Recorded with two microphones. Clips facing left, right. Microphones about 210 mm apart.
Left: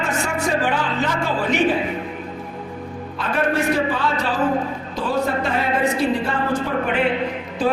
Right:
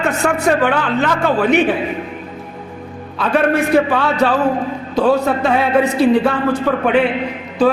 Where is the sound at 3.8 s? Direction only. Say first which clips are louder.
Right 6 dB; 65° right (ahead or behind).